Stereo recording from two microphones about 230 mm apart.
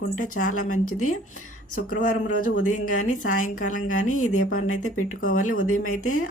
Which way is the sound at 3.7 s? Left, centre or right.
Left.